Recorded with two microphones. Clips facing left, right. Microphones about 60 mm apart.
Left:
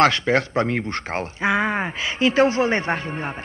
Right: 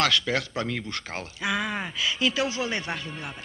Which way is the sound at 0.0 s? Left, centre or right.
Left.